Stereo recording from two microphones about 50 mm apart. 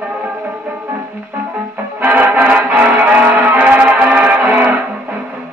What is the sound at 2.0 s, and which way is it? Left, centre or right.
Brass instrument, right.